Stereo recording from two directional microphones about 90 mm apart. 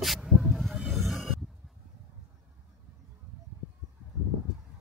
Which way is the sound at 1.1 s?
Centre (ahead or behind).